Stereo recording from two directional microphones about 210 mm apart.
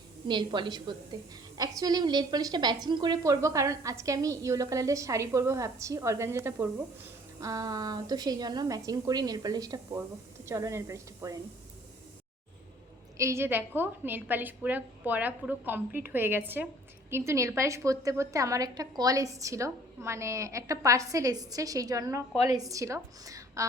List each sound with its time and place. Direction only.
0.3 s a woman's voice: 20° right (ahead or behind)
13.1 s a woman's voice: 15° right (ahead or behind)